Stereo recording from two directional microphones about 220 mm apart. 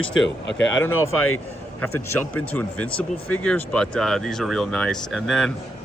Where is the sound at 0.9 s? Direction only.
70° left (ahead or behind).